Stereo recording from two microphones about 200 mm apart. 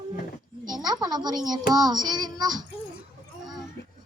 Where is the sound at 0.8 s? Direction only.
20° right (ahead or behind).